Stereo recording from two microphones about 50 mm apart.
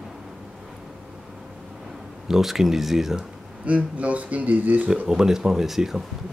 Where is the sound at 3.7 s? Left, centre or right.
Right.